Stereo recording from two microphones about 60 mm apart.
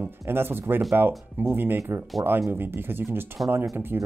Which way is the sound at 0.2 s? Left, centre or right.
Right.